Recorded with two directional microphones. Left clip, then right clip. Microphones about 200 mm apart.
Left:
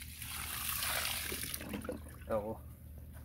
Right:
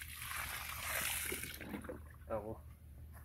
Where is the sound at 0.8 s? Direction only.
Centre (ahead or behind).